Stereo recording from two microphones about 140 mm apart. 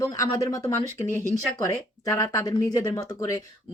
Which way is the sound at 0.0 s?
25° left (ahead or behind).